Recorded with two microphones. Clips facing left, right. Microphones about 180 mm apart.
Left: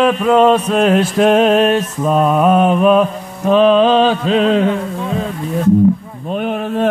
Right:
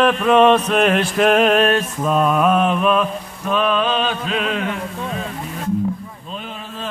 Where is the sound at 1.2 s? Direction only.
25° left (ahead or behind).